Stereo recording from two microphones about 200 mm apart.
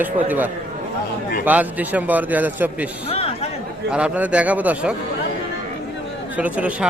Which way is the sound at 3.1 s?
30° left (ahead or behind).